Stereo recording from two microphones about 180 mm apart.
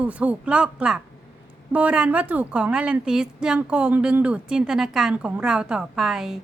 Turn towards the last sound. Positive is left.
turn(degrees=0)  # may be behind; listen again after turning